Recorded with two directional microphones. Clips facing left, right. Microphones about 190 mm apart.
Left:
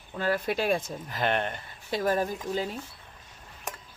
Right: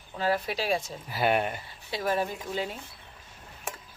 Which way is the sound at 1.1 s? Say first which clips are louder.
Right 2 dB; 10° right (ahead or behind).